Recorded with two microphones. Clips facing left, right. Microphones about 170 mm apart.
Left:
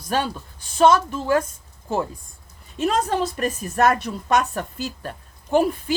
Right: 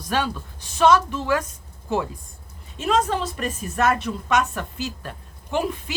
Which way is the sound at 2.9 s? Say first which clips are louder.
Even; 45° left (ahead or behind).